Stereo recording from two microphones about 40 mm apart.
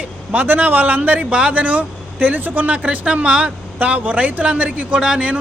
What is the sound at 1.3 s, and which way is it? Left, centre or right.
Speech, right.